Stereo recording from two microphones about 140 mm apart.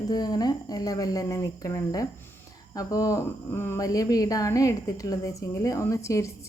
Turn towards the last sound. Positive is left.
turn(degrees=20)  # may be behind; listen again after turning